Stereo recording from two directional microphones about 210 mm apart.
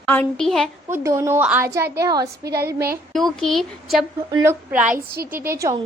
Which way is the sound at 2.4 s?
50° right (ahead or behind).